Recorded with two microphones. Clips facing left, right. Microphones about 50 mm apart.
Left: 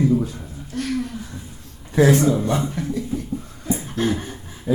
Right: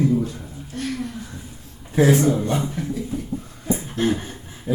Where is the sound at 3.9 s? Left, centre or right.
Right.